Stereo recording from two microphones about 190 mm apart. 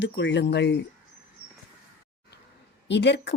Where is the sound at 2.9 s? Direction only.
65° left (ahead or behind).